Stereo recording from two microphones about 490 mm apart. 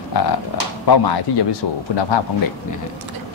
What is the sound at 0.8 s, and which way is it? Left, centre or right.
Speech, left.